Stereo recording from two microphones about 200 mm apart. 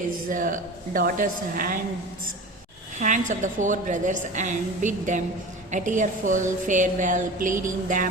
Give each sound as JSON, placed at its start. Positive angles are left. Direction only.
{"t": 0.3, "sound": "a woman's voice", "side_deg": -40}
{"t": 3.0, "sound": "a woman's voice", "side_deg": -40}